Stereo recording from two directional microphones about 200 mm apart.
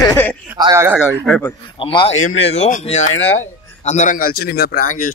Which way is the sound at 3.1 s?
75° left (ahead or behind).